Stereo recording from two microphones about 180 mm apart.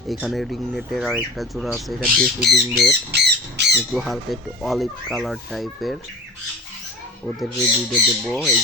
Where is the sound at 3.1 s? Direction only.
65° right (ahead or behind).